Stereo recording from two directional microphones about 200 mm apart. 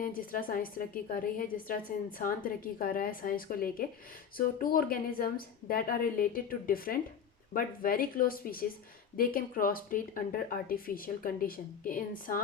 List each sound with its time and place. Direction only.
0.0 s a woman's voice: 45° left (ahead or behind)